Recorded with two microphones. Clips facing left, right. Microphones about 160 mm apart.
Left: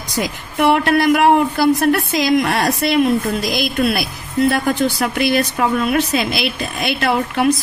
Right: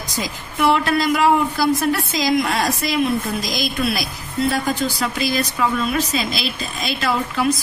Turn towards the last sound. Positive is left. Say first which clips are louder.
# left 4 dB
turn(degrees=60)  # may be behind; listen again after turning